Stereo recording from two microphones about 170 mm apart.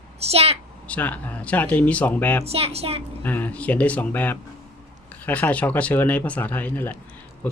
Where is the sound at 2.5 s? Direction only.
35° right (ahead or behind).